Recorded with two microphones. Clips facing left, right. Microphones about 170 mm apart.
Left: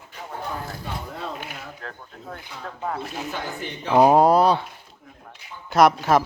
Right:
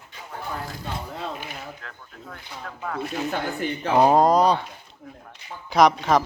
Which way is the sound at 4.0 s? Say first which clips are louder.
Left 2 dB; 10° left (ahead or behind).